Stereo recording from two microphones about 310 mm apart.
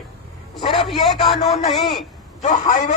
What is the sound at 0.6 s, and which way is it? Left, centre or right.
Speech, centre.